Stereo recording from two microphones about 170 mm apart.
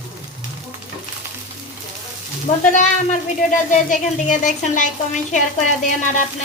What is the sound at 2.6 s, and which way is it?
A woman's voice, 50° left (ahead or behind).